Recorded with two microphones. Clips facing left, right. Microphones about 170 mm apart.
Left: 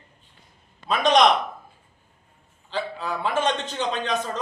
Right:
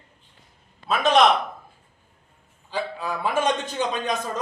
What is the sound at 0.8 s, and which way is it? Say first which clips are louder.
Speech: even; 5° right (ahead or behind).